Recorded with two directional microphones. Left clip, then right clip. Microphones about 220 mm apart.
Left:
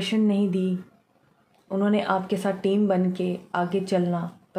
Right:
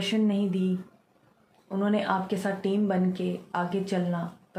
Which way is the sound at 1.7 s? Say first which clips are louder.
Left 3 dB; 50° left (ahead or behind).